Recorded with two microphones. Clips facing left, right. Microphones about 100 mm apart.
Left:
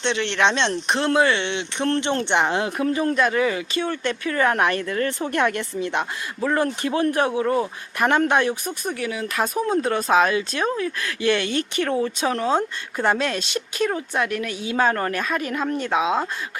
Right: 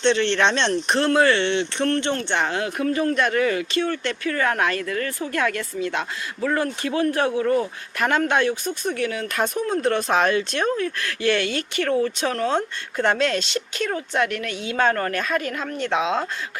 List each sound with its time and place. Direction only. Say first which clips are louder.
0.0 s speech: right 2 dB; 15° left (ahead or behind)
6.6 s speech: left 3 dB; 25° left (ahead or behind); by 16.3 s 5° left (ahead or behind)